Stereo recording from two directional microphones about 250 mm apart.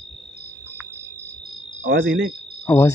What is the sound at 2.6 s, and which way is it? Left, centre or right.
Insect, centre.